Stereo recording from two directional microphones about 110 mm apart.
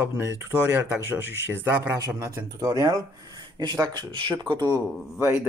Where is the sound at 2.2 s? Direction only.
30° right (ahead or behind).